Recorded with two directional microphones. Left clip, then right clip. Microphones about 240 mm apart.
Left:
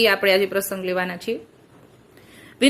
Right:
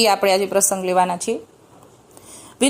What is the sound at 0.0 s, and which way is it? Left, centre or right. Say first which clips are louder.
A woman's voice: right 1 dB; centre.